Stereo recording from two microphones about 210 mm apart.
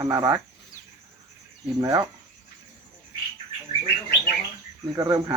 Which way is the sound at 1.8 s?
15° right (ahead or behind).